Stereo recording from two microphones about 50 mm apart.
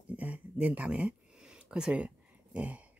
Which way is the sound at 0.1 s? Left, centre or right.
Right.